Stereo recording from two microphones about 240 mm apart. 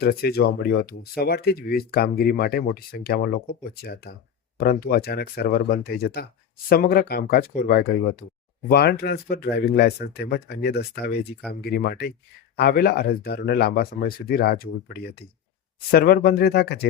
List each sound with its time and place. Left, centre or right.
0.0 s speech: left